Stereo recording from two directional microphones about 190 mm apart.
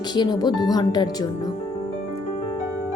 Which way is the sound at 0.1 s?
20° left (ahead or behind).